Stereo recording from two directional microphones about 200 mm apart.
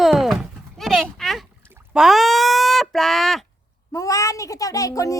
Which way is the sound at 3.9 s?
15° left (ahead or behind).